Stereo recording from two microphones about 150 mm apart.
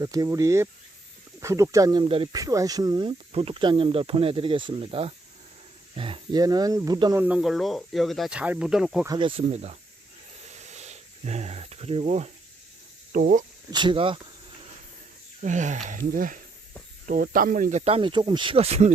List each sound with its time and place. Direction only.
0.0 s speech: 25° right (ahead or behind)
2.0 s speech: 40° right (ahead or behind)
2.3 s speech: 20° right (ahead or behind)
6.4 s speech: 25° right (ahead or behind)
7.2 s speech: 10° right (ahead or behind)
9.0 s speech: 30° right (ahead or behind)
10.4 s insect: 50° right (ahead or behind)
13.1 s speech: 60° right (ahead or behind)
13.7 s speech: 30° right (ahead or behind)
15.4 s speech: 55° right (ahead or behind)